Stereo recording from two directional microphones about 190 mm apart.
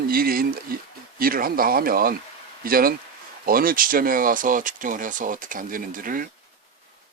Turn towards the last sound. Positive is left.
turn(degrees=-45)  # may be behind; listen again after turning